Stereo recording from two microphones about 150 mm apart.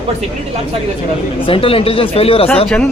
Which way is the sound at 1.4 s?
35° left (ahead or behind).